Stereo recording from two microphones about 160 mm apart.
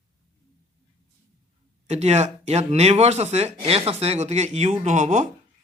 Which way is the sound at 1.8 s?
45° right (ahead or behind).